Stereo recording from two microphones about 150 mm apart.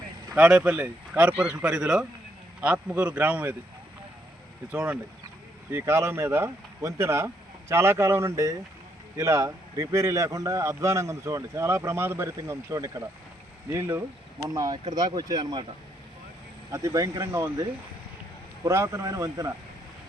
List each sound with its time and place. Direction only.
0.3 s speech: 5° right (ahead or behind)
4.7 s a man's voice: 10° right (ahead or behind); by 15.6 s 25° right (ahead or behind)
16.7 s a man's voice: 20° right (ahead or behind)